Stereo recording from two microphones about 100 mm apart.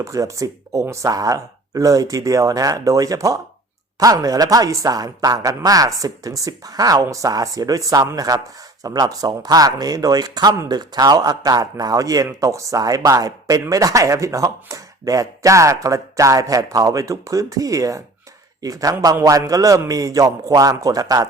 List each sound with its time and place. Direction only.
0.0 s a man's voice: 35° right (ahead or behind)